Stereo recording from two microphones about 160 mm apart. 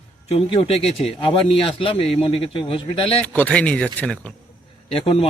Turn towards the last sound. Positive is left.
turn(degrees=35)  # may be behind; listen again after turning